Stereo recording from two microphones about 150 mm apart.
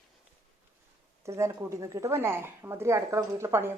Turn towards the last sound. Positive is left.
turn(degrees=-15)  # may be behind; listen again after turning